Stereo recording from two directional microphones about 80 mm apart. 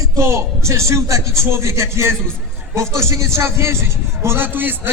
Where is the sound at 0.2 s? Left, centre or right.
Right.